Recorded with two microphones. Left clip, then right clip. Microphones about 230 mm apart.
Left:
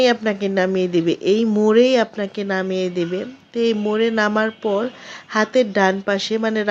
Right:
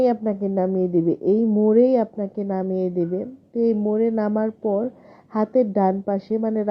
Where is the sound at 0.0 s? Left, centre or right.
Centre.